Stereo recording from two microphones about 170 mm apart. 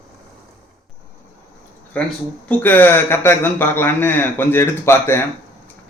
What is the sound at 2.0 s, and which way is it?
Speech, 10° left (ahead or behind).